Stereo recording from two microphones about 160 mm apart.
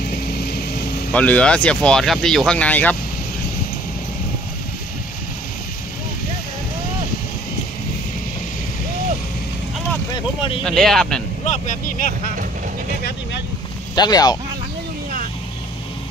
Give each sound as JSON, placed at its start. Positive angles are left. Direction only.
{"t": 0.1, "sound": "vehicle", "side_deg": 85}
{"t": 1.1, "sound": "speech", "side_deg": 10}
{"t": 10.1, "sound": "vehicle", "side_deg": 30}
{"t": 10.6, "sound": "speech", "side_deg": 0}
{"t": 11.4, "sound": "speech", "side_deg": 50}
{"t": 13.9, "sound": "speech", "side_deg": 25}